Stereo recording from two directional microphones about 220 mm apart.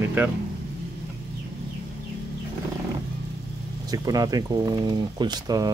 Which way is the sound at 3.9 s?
15° right (ahead or behind).